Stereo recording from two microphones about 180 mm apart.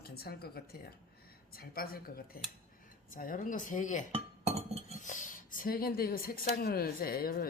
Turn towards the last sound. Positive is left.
turn(degrees=55)  # may be behind; listen again after turning